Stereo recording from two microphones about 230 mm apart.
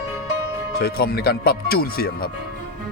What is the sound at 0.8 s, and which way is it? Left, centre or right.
Speech, left.